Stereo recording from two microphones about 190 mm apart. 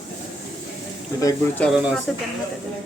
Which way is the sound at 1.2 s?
10° left (ahead or behind).